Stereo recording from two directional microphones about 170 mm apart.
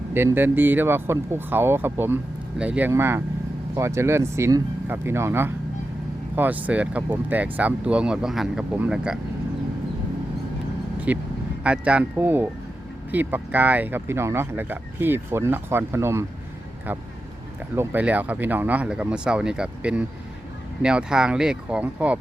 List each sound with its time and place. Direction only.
0.1 s speech: 10° right (ahead or behind)
11.1 s speech: 10° right (ahead or behind)
17.7 s speech: 10° right (ahead or behind)